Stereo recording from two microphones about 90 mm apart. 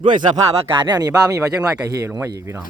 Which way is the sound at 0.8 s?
45° right (ahead or behind).